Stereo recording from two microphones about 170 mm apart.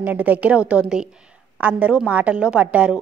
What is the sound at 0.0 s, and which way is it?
A woman's voice, 10° right (ahead or behind).